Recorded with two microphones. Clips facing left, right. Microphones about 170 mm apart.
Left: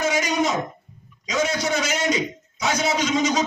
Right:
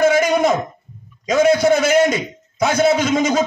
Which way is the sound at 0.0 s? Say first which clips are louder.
Right 8 dB; 55° right (ahead or behind).